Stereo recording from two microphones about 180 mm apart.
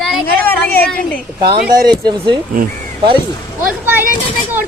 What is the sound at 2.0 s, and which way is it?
Speech, 25° right (ahead or behind).